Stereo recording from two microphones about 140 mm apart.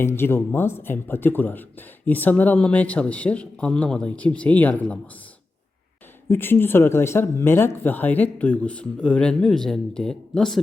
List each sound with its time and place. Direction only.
0.0 s speech: 15° left (ahead or behind)
6.2 s speech: 15° left (ahead or behind)